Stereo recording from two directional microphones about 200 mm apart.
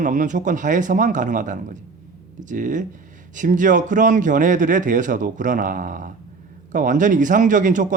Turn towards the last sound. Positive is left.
turn(degrees=-40)  # may be behind; listen again after turning